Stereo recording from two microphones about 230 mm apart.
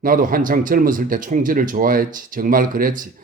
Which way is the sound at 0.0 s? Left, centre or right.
Right.